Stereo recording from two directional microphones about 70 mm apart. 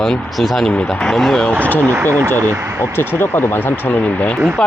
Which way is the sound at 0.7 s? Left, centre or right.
Centre.